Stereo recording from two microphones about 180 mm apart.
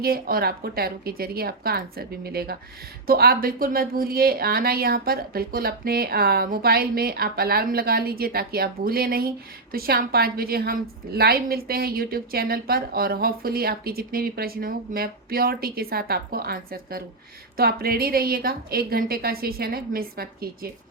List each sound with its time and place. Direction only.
0.0 s a woman's voice: 55° right (ahead or behind)